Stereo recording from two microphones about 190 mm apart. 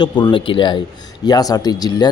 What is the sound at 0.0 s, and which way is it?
A man's voice, 25° left (ahead or behind).